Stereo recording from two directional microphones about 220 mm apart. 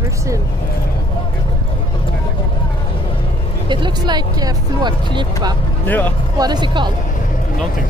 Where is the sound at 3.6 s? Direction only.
20° right (ahead or behind).